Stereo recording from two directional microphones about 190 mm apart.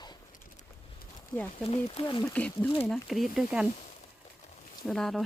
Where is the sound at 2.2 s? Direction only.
10° left (ahead or behind).